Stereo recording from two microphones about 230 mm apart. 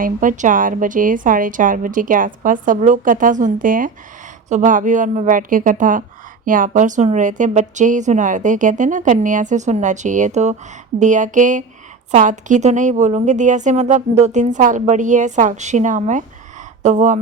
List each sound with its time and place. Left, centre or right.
0.0 s speech: right